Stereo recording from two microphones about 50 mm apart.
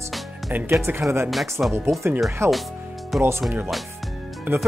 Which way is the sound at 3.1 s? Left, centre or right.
Centre.